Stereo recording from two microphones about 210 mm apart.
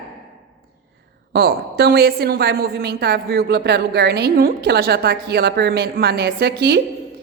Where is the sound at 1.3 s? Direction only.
50° right (ahead or behind).